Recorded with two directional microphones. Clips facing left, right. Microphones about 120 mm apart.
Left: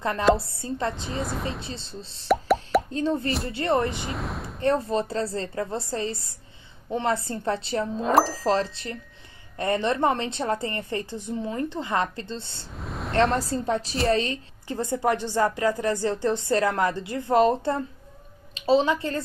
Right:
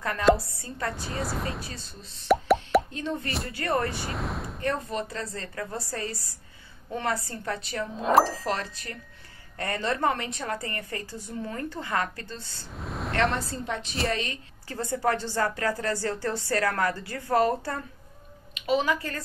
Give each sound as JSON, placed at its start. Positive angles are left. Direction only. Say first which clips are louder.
{"t": 0.4, "sound": "a woman's voice", "louder": "left 5 dB", "side_deg": 30}
{"t": 1.1, "sound": "speech", "louder": "left 2 dB", "side_deg": 0}
{"t": 1.6, "sound": "a woman's voice", "louder": "left 4 dB", "side_deg": 25}
{"t": 2.2, "sound": "plop", "louder": "even", "side_deg": 0}
{"t": 2.9, "sound": "a woman's voice", "louder": "left 6 dB", "side_deg": 35}
{"t": 4.1, "sound": "a sound", "louder": "left 1 dB", "side_deg": 0}
{"t": 4.6, "sound": "a woman's voice", "louder": "left 7 dB", "side_deg": 30}
{"t": 12.6, "sound": "a sound", "louder": "right 4 dB", "side_deg": 0}
{"t": 13.4, "sound": "a woman's voice", "louder": "left 7 dB", "side_deg": 35}
{"t": 14.7, "sound": "a woman's voice", "louder": "left 2 dB", "side_deg": 15}